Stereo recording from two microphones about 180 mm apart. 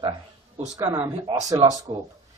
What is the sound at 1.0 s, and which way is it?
Speech, 25° right (ahead or behind).